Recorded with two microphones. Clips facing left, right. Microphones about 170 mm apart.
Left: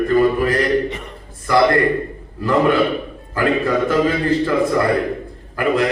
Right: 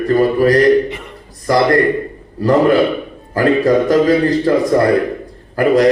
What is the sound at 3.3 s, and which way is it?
A man's voice, 40° right (ahead or behind).